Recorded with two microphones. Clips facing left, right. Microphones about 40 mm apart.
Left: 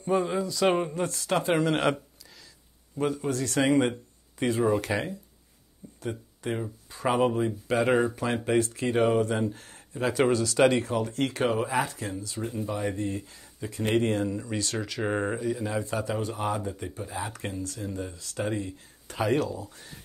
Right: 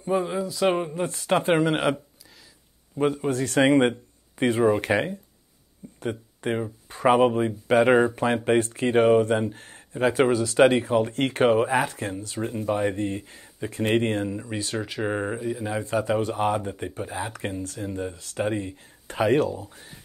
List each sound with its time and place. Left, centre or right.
0.0 s a sound: centre
1.0 s speech: right
1.7 s speech: centre
3.0 s speech: right
5.9 s a sound: right
6.9 s speech: right
7.9 s speech: centre
8.5 s speech: right
11.0 s speech: right
13.2 s speech: right
14.2 s speech: centre
16.2 s speech: right
19.7 s speech: centre